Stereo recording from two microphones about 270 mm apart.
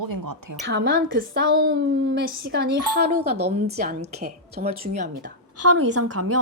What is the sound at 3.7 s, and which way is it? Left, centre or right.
A woman's voice, right.